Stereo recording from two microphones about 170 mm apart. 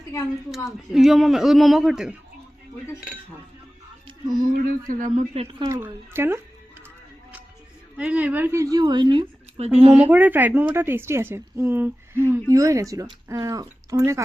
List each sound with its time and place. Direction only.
0.9 s a man's voice: centre (ahead or behind)
4.3 s speech: 55° right (ahead or behind); by 5.6 s 35° right (ahead or behind)
5.6 s a woman's voice: 15° right (ahead or behind)
7.9 s a woman's voice: 10° right (ahead or behind); by 9.6 s 30° right (ahead or behind)
10.1 s a woman's voice: 10° right (ahead or behind)